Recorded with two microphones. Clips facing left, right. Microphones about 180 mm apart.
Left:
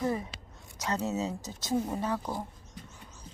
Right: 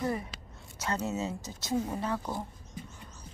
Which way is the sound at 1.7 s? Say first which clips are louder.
Left 1 dB; 5° left (ahead or behind).